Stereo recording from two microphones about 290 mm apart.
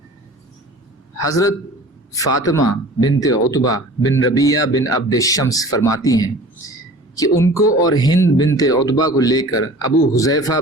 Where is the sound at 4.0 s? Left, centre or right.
Left.